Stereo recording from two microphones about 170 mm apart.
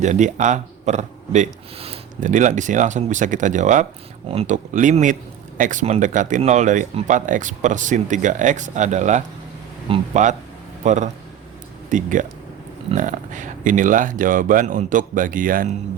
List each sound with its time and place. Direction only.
0.0 s speech: 45° right (ahead or behind)